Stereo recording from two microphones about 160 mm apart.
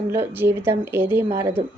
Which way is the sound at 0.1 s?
15° right (ahead or behind).